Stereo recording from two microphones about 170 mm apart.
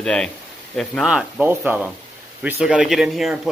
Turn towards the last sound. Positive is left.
turn(degrees=0)  # may be behind; listen again after turning